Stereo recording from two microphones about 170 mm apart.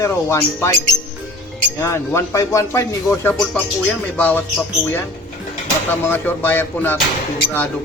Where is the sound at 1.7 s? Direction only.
15° left (ahead or behind).